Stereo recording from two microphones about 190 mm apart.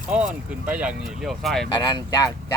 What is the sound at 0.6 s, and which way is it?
Speech, 5° right (ahead or behind).